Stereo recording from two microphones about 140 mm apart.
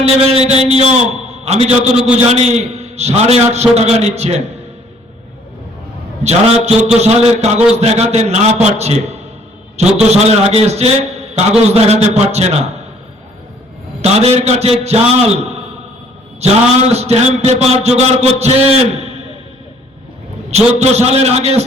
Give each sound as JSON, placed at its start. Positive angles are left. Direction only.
{"t": 0.0, "sound": "a man's voice", "side_deg": -45}
{"t": 6.2, "sound": "a man's voice", "side_deg": -50}
{"t": 14.0, "sound": "a man's voice", "side_deg": -50}
{"t": 20.7, "sound": "a man's voice", "side_deg": -50}